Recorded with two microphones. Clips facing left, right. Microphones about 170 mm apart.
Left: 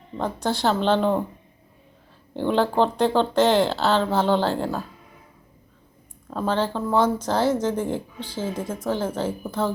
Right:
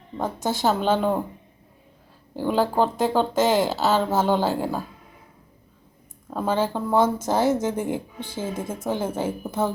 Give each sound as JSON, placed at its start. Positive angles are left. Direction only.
{"t": 0.6, "sound": "speech", "side_deg": -10}
{"t": 2.3, "sound": "speech", "side_deg": -5}
{"t": 6.3, "sound": "speech", "side_deg": -10}